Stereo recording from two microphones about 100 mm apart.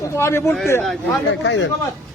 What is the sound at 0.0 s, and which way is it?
Speech, 25° left (ahead or behind).